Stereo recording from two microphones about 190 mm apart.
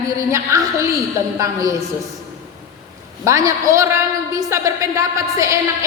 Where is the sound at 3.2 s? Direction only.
15° right (ahead or behind).